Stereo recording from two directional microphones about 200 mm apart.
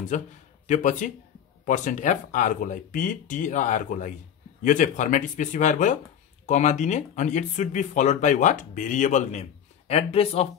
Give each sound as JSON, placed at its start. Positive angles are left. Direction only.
{"t": 0.1, "sound": "speech", "side_deg": 40}